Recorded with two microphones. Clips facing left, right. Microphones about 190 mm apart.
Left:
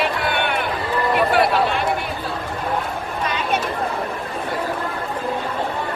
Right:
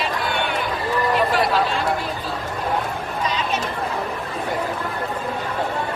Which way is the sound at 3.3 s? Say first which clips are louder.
Left 3 dB; 55° left (ahead or behind).